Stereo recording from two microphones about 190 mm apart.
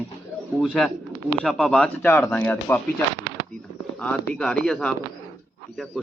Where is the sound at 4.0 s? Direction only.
5° left (ahead or behind).